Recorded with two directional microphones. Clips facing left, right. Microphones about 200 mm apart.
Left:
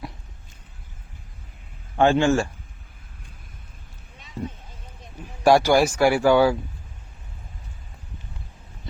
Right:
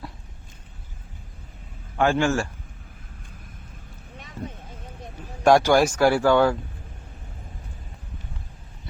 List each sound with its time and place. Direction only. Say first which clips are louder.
2.0 s a man's voice: left 3 dB; 25° left (ahead or behind)
5.4 s speech: even; 10° left (ahead or behind)